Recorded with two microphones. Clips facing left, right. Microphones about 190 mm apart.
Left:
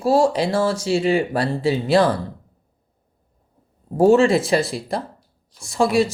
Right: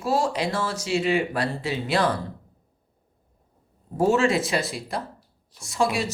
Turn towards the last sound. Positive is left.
turn(degrees=30)  # may be behind; listen again after turning